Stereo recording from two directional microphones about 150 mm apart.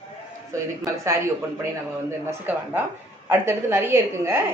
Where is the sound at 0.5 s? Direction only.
20° right (ahead or behind).